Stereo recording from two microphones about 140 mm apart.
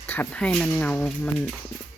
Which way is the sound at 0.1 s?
10° left (ahead or behind).